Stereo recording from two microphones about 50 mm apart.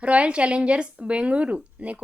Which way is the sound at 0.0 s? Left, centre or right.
Right.